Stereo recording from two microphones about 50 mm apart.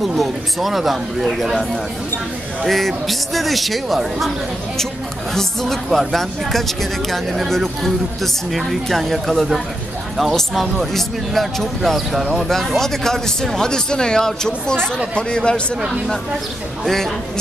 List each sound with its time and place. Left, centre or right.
0.0 s speech: centre
2.6 s speech: centre
5.3 s a man's voice: centre
16.8 s speech: centre